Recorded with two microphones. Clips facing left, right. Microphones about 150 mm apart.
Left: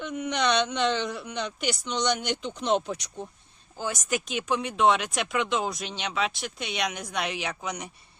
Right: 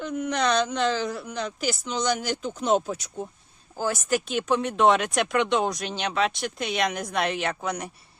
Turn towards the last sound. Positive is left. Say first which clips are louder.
# right 5 dB
turn(degrees=0)  # may be behind; listen again after turning